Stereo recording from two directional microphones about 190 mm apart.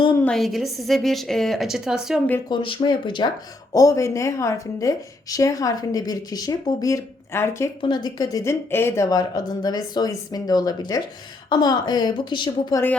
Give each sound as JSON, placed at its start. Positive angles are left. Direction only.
{"t": 0.3, "sound": "a woman's voice", "side_deg": 0}
{"t": 2.5, "sound": "speech", "side_deg": 25}